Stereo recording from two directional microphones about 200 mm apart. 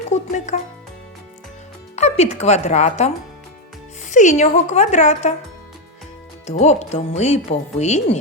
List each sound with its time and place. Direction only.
0.1 s speech: 35° left (ahead or behind)
2.0 s speech: 35° left (ahead or behind)
4.1 s speech: 40° left (ahead or behind)
6.4 s speech: 35° left (ahead or behind)